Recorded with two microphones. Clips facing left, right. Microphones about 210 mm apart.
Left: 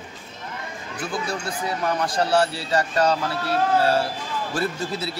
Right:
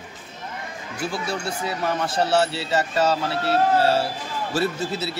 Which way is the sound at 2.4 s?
25° right (ahead or behind).